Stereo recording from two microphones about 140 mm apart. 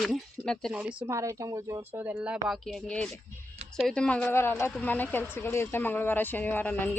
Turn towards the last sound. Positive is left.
turn(degrees=15)  # may be behind; listen again after turning